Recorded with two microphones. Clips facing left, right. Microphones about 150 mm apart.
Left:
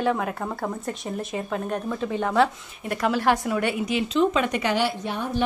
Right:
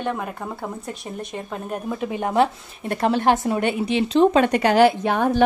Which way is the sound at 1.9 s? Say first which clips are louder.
Right 3 dB; 15° right (ahead or behind).